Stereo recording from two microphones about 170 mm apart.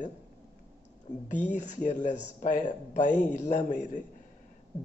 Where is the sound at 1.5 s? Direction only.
45° left (ahead or behind).